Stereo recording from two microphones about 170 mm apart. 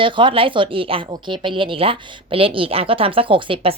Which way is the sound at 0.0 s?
30° right (ahead or behind).